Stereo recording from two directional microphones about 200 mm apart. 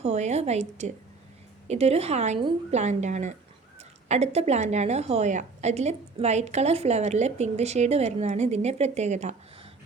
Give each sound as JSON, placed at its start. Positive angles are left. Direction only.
{"t": 0.0, "sound": "a woman's voice", "side_deg": -35}